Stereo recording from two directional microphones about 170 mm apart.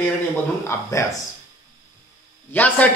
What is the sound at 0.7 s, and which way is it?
Speech, 20° left (ahead or behind).